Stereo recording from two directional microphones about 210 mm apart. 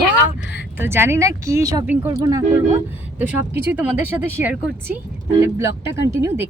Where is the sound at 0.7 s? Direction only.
10° right (ahead or behind).